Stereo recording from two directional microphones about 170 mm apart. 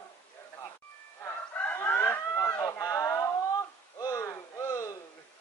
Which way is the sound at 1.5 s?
10° left (ahead or behind).